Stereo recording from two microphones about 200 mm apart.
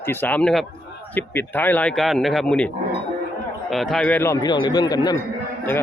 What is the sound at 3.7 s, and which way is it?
A man's voice, centre (ahead or behind).